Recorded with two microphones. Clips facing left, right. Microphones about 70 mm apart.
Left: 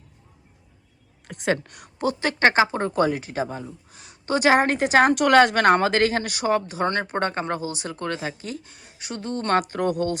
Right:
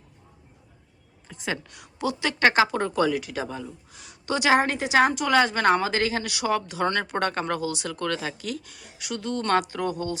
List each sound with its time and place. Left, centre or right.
1.3 s speech: left